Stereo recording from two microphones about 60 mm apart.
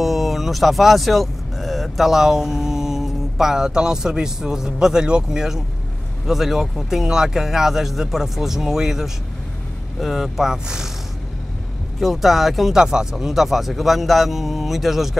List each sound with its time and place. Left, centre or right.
0.0 s speech: centre
12.0 s speech: centre